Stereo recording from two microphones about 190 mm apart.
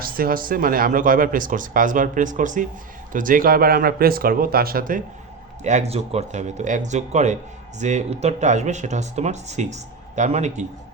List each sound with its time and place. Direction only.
0.0 s speech: 50° right (ahead or behind)
5.6 s speech: 35° right (ahead or behind)